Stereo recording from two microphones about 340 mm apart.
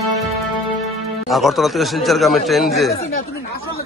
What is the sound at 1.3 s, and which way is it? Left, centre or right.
A man's voice, centre.